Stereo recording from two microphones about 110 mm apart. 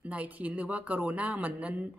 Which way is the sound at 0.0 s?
15° right (ahead or behind).